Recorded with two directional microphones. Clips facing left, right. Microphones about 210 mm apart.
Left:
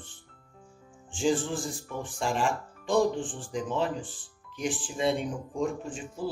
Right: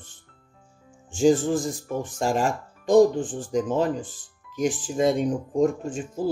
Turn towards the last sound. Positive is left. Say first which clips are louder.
# right 7 dB
turn(degrees=-45)  # may be behind; listen again after turning